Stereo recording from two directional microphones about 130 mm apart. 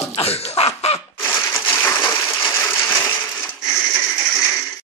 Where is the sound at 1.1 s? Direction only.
20° left (ahead or behind).